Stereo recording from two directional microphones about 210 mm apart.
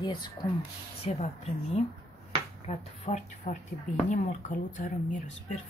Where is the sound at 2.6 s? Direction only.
35° left (ahead or behind).